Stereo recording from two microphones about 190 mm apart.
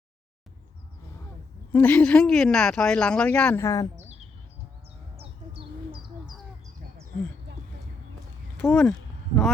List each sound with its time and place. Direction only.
1.7 s speech: 10° left (ahead or behind)
5.1 s bird: 30° right (ahead or behind)
8.5 s speech: 5° left (ahead or behind)